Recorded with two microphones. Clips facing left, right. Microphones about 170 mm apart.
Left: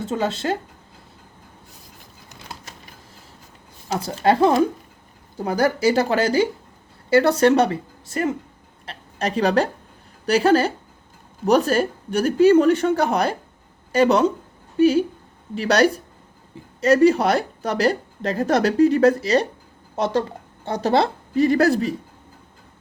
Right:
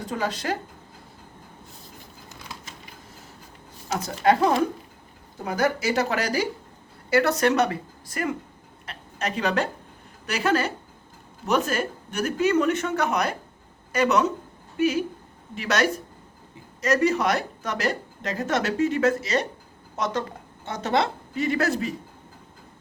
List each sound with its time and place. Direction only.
0.0 s a woman's voice: 25° left (ahead or behind)
3.8 s a woman's voice: 30° left (ahead or behind)
8.9 s a sound: 35° left (ahead or behind)
10.2 s a woman's voice: 30° left (ahead or behind)